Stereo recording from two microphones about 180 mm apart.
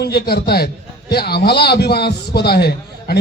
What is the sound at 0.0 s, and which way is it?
A man's voice, 60° left (ahead or behind).